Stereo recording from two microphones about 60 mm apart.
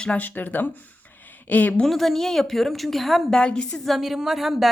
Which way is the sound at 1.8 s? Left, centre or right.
Centre.